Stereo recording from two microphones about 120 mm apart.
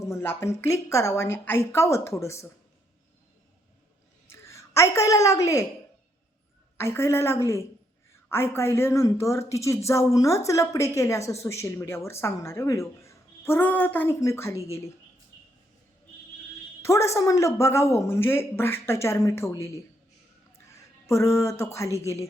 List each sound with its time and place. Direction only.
0.0 s speech: 20° left (ahead or behind)
4.3 s a woman's voice: 25° left (ahead or behind)
6.7 s speech: 20° left (ahead or behind)
14.2 s speech: 25° left (ahead or behind)
16.8 s speech: 25° left (ahead or behind)
21.1 s speech: 25° left (ahead or behind)